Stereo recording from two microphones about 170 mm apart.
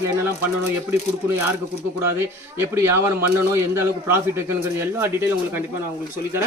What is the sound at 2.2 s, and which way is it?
Speech, 15° right (ahead or behind).